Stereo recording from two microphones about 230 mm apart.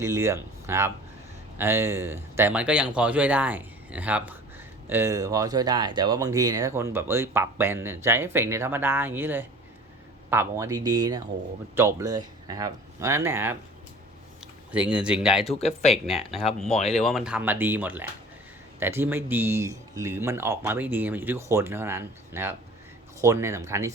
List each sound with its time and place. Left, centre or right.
0.0 s speech: centre
15.5 s speech: left
16.9 s speech: centre